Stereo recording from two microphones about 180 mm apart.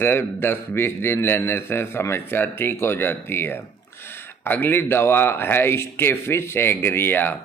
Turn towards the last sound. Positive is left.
turn(degrees=10)  # may be behind; listen again after turning